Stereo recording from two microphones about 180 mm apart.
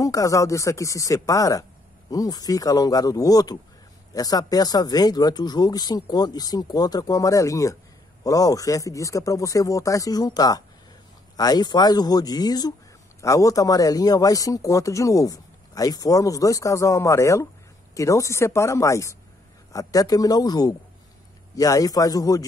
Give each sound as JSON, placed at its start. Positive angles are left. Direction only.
{"t": 0.0, "sound": "a man's voice", "side_deg": 20}